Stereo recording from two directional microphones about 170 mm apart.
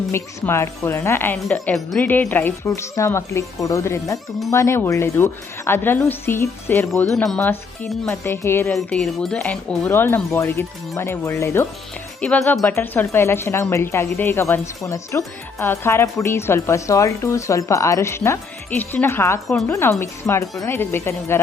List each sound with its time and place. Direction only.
0.1 s speech: 15° left (ahead or behind)
8.7 s speech: 5° left (ahead or behind)